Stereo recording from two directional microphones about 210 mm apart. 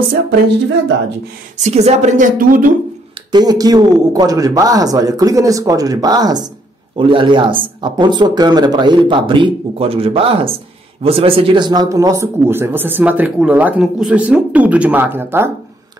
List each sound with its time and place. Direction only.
1.6 s a woman's voice: 30° right (ahead or behind)
3.3 s a man's voice: 20° right (ahead or behind)